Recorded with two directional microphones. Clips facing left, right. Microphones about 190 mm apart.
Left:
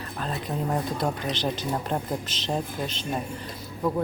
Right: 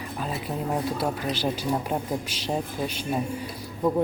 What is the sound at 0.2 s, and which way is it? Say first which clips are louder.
Speech: left 1 dB; 5° right (ahead or behind).